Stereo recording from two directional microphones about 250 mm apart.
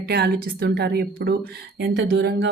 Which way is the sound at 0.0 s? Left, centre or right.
Right.